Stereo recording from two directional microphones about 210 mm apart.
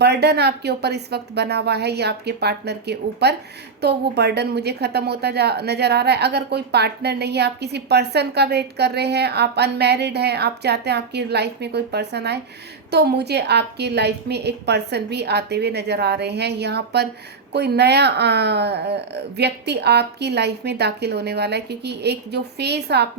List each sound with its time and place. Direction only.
0.0 s a woman's voice: 50° right (ahead or behind)